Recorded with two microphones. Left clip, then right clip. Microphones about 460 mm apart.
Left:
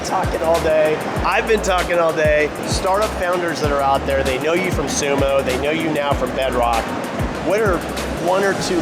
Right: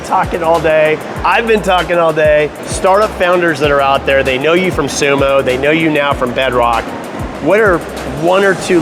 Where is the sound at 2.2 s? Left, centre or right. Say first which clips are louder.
Right 7 dB; right.